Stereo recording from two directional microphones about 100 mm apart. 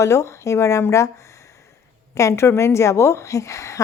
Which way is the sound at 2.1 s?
30° left (ahead or behind).